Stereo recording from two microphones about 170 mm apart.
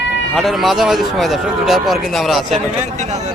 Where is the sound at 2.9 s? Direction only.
45° right (ahead or behind).